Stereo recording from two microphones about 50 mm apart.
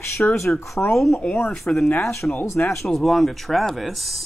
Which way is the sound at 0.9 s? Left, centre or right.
Centre.